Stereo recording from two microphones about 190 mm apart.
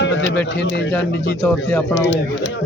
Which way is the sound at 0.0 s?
75° left (ahead or behind).